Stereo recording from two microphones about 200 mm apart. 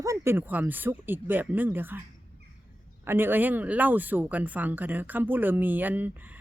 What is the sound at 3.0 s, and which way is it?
Speech, 10° right (ahead or behind).